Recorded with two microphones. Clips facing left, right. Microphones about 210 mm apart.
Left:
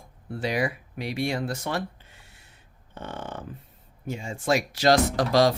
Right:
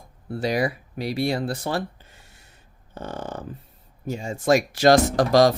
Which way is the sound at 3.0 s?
40° right (ahead or behind).